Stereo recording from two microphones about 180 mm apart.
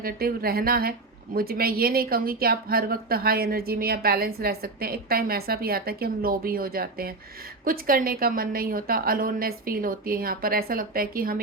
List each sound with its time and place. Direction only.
0.0 s a woman's voice: 55° right (ahead or behind)